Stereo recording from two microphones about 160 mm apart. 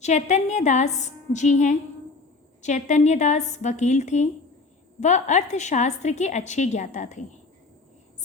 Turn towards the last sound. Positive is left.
turn(degrees=50)  # may be behind; listen again after turning